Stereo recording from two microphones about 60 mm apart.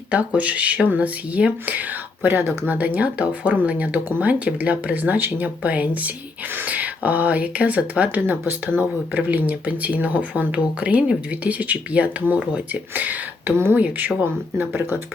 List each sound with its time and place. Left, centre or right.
0.1 s speech: right